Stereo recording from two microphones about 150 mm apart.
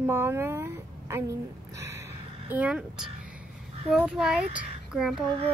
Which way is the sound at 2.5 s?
10° right (ahead or behind).